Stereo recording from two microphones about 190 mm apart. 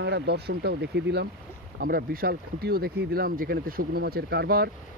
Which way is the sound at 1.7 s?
50° right (ahead or behind).